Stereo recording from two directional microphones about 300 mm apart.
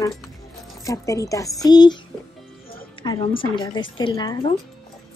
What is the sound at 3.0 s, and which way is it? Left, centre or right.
A man's voice, centre.